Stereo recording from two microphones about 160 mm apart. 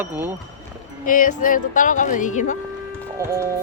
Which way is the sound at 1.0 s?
55° left (ahead or behind).